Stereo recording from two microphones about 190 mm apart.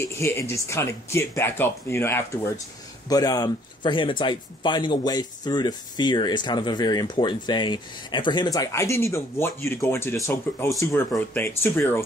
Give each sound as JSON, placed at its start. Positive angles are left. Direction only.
{"t": 0.0, "sound": "speech", "side_deg": 15}